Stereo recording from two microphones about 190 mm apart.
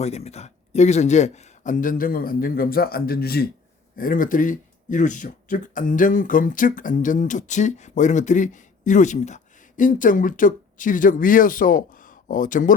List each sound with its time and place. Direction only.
0.0 s speech: 35° left (ahead or behind)